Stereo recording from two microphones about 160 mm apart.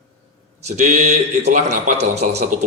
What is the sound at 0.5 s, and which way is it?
A man's voice, 45° right (ahead or behind).